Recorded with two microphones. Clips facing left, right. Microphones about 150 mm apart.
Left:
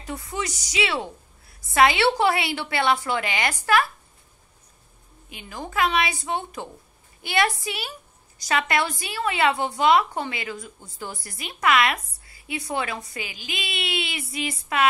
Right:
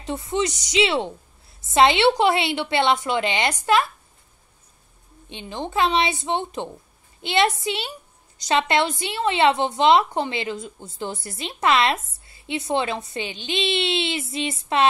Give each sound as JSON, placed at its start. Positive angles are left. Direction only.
{"t": 0.0, "sound": "a woman's voice", "side_deg": -25}
{"t": 5.3, "sound": "a woman's voice", "side_deg": -25}